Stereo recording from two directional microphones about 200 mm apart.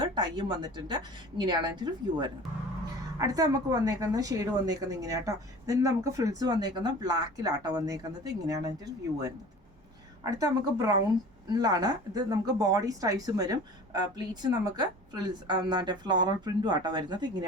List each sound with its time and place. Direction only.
0.0 s a woman's voice: 20° right (ahead or behind)